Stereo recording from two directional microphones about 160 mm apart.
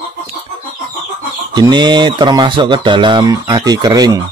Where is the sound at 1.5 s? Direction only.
25° right (ahead or behind).